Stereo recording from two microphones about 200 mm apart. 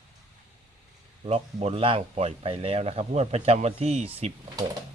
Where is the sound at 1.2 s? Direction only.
30° right (ahead or behind).